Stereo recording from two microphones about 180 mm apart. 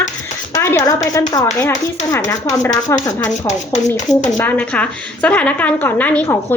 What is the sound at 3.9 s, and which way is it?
Speech, 45° left (ahead or behind).